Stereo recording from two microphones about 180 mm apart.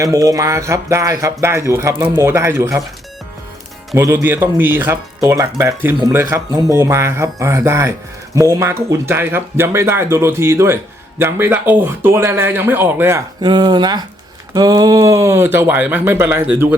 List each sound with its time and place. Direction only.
0.0 s speech: 20° right (ahead or behind)
3.9 s speech: 15° right (ahead or behind)